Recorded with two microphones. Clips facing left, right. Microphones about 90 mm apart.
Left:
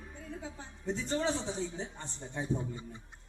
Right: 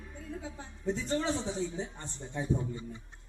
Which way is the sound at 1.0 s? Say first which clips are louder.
Left 1 dB; 25° left (ahead or behind).